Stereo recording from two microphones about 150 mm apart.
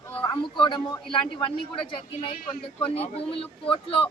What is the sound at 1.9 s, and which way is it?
Speech, 35° left (ahead or behind).